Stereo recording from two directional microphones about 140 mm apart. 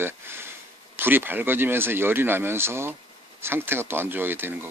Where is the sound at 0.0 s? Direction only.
15° right (ahead or behind).